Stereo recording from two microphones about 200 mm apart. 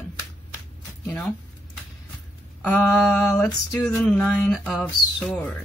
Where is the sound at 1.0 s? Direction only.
5° left (ahead or behind).